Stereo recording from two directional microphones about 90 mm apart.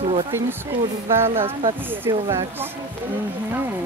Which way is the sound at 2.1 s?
40° right (ahead or behind).